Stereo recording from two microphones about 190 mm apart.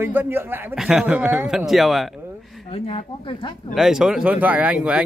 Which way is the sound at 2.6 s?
30° left (ahead or behind).